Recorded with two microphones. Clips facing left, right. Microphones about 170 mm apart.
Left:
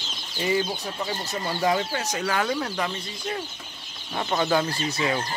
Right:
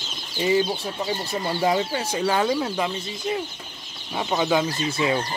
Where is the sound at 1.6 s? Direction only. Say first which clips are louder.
Right 1 dB; 20° right (ahead or behind).